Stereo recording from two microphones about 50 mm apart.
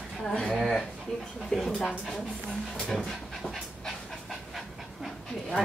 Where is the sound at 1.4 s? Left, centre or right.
Centre.